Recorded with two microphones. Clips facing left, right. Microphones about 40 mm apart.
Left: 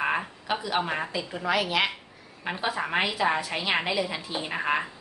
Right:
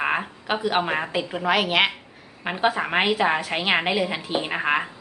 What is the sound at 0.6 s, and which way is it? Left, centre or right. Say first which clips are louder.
A woman's voice: right 6 dB; right.